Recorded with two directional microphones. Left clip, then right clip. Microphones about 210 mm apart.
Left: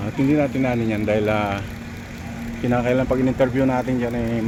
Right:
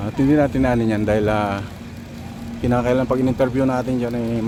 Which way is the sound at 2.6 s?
20° right (ahead or behind).